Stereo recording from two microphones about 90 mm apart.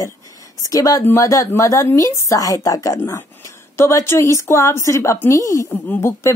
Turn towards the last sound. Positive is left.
turn(degrees=30)  # may be behind; listen again after turning